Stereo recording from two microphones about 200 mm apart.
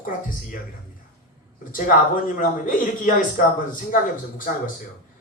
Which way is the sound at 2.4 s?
40° left (ahead or behind).